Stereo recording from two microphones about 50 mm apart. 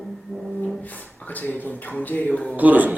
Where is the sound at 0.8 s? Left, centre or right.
Left.